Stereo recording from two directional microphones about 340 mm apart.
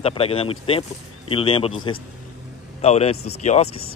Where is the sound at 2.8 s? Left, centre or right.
Centre.